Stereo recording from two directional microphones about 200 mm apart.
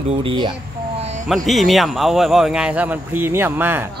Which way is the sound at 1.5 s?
Centre (ahead or behind).